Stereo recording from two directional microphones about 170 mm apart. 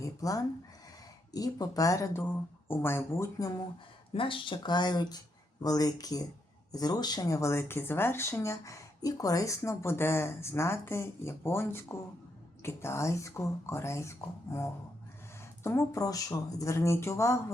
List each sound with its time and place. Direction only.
0.0 s speech: 20° left (ahead or behind)
4.1 s speech: 30° left (ahead or behind)